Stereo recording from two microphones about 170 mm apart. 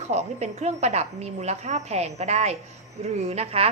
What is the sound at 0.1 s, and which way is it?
A woman's voice, 40° right (ahead or behind).